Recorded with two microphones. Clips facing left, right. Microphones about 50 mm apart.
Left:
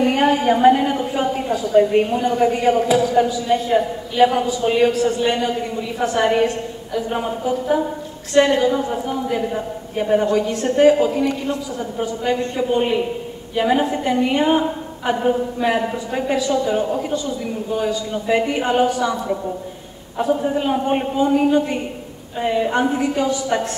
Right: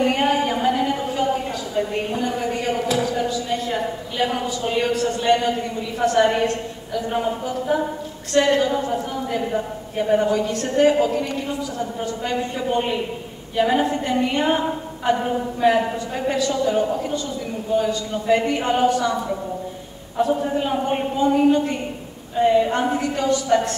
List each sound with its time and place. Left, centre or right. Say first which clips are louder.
0.0 s a sound: left 3 dB; centre
2.0 s a man's voice: left 6 dB; centre
12.7 s a man's voice: left 5 dB; centre